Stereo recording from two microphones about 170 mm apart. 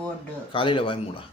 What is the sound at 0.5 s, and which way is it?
Speech, 30° left (ahead or behind).